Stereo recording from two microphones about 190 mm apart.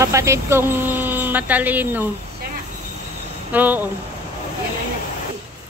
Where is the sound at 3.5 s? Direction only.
10° right (ahead or behind).